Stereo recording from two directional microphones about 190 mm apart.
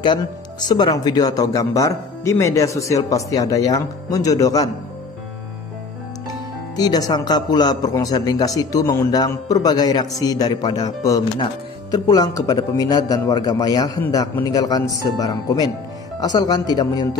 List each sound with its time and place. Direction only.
0.7 s speech: 20° left (ahead or behind)
6.8 s a man's voice: 20° left (ahead or behind)